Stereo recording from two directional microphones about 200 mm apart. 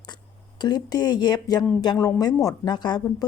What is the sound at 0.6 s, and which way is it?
Speech, 20° left (ahead or behind).